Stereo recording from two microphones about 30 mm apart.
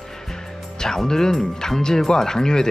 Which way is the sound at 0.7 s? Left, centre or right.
Centre.